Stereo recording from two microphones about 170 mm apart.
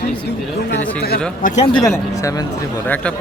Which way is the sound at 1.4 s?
45° left (ahead or behind).